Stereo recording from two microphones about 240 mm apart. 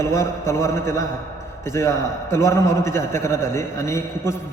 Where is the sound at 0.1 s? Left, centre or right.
Centre.